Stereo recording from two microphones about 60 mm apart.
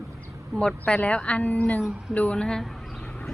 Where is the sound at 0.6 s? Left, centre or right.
Centre.